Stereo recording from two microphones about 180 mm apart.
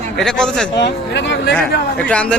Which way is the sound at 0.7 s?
75° left (ahead or behind).